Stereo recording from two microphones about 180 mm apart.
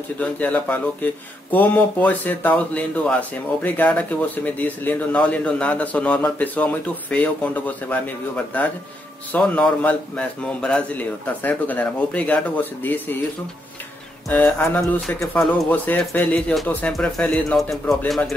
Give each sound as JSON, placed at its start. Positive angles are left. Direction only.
{"t": 0.2, "sound": "a man's voice", "side_deg": 10}
{"t": 9.3, "sound": "a man's voice", "side_deg": 5}
{"t": 14.3, "sound": "a man's voice", "side_deg": 10}